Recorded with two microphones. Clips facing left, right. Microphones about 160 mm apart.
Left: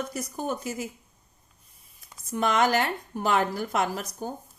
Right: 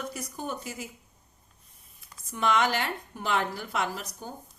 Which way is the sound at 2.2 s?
45° left (ahead or behind).